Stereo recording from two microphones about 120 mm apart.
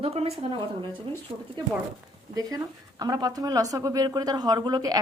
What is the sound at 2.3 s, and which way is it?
A woman's voice, 30° right (ahead or behind).